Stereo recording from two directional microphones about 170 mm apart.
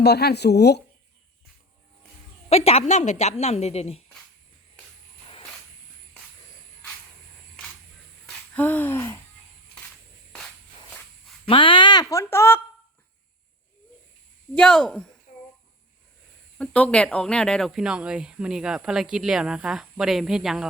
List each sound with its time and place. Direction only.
0.0 s speech: 75° left (ahead or behind)
2.5 s speech: 35° left (ahead or behind)
8.3 s wheeze: 10° left (ahead or behind)
11.4 s speech: 30° left (ahead or behind); by 12.6 s 15° left (ahead or behind)
14.5 s speech: 5° left (ahead or behind)
16.6 s speech: 5° left (ahead or behind)